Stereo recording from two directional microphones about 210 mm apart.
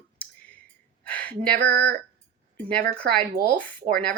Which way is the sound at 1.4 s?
45° right (ahead or behind).